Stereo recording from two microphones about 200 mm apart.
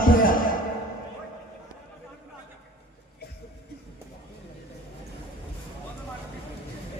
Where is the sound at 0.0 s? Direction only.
45° left (ahead or behind).